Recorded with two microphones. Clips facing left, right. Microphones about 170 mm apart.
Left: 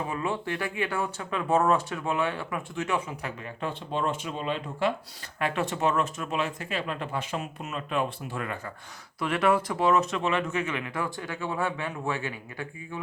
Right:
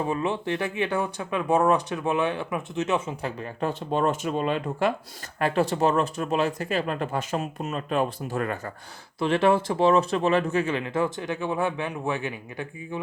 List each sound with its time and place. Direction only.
0.1 s speech: 20° right (ahead or behind); by 4.9 s 50° right (ahead or behind)
5.4 s speech: 35° right (ahead or behind)
9.1 s speech: 25° right (ahead or behind)